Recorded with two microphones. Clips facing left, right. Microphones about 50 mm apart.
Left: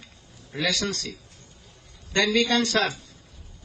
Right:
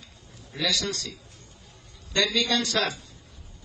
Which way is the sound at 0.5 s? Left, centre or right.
Left.